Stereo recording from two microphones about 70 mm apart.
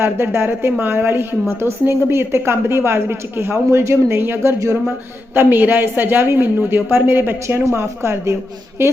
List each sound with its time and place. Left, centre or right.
0.0 s a woman's voice: right